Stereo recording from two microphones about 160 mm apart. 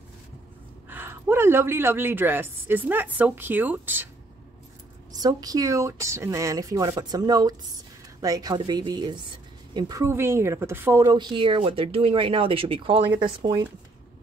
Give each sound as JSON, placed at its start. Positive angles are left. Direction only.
{"t": 0.8, "sound": "a woman's voice", "side_deg": -15}
{"t": 5.1, "sound": "a woman's voice", "side_deg": -25}